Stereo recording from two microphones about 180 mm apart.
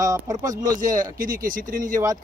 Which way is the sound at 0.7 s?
45° right (ahead or behind).